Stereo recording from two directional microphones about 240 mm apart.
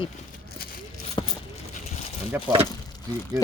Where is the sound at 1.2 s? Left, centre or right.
Centre.